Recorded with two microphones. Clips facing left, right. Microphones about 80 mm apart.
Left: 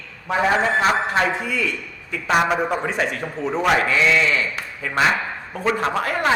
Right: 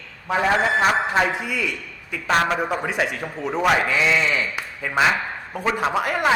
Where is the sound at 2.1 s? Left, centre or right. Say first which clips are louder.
Left 1 dB; centre.